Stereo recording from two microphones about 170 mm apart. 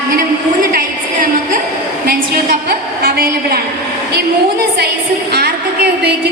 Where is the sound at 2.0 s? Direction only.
60° right (ahead or behind).